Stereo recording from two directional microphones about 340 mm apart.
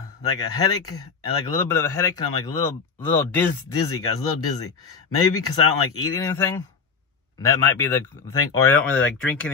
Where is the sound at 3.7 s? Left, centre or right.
Left.